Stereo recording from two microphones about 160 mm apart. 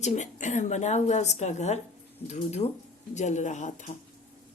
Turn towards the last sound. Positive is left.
turn(degrees=50)  # may be behind; listen again after turning